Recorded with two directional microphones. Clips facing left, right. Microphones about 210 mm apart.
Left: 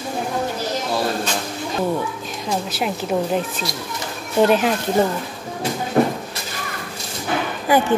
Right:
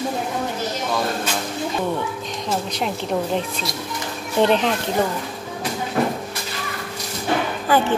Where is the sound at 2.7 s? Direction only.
5° left (ahead or behind).